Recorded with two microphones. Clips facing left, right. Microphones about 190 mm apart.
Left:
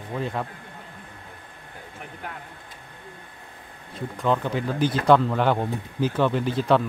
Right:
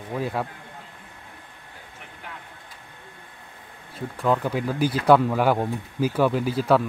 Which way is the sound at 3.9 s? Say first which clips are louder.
Right 1 dB; 5° right (ahead or behind).